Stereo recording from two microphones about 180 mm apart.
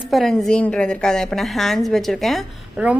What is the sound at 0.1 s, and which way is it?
A woman's voice, centre (ahead or behind).